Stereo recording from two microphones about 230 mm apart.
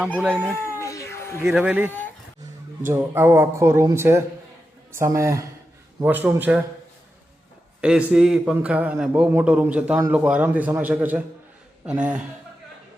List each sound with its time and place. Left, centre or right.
0.1 s cat: centre
1.4 s a man's voice: centre
2.9 s speech: centre
7.8 s a man's voice: centre